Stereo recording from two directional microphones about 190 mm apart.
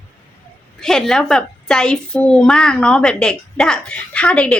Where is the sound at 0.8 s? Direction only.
Centre (ahead or behind).